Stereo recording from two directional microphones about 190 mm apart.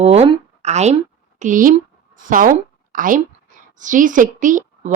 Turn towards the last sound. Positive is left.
turn(degrees=-40)  # may be behind; listen again after turning